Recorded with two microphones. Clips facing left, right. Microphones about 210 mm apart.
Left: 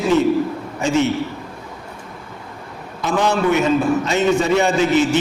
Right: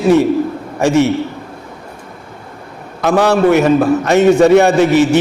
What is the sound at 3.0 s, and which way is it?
A man's voice, 65° right (ahead or behind).